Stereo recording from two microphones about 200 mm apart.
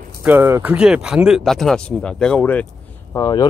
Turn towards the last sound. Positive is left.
turn(degrees=20)  # may be behind; listen again after turning